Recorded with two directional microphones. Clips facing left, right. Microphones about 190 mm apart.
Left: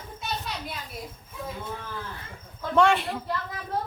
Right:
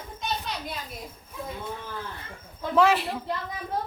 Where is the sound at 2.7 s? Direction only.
Centre (ahead or behind).